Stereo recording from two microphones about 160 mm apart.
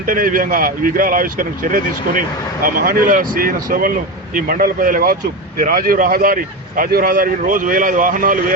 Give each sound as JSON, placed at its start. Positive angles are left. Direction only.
{"t": 0.0, "sound": "speech", "side_deg": -60}